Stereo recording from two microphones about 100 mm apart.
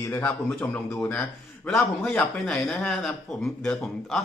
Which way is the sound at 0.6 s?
20° left (ahead or behind).